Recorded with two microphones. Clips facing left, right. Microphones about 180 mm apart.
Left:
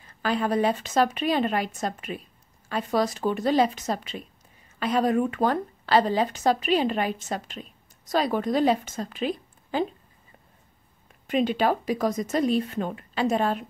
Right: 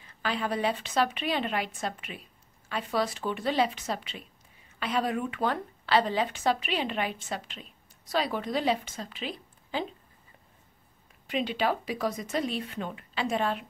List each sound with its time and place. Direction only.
0.0 s a woman's voice: 45° left (ahead or behind)
11.2 s a woman's voice: 45° left (ahead or behind)